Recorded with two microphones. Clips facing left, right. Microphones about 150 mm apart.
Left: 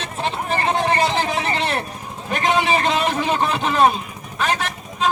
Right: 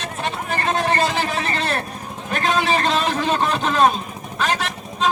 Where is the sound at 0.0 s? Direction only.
25° left (ahead or behind).